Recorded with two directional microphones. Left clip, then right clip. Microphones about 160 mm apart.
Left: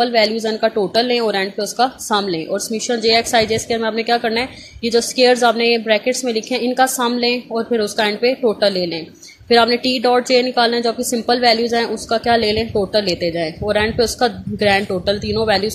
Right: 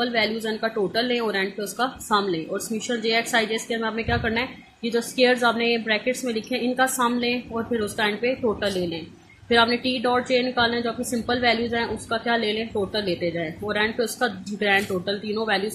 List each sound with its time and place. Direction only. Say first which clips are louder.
0.0 s a woman's voice: left 8 dB; 45° left (ahead or behind)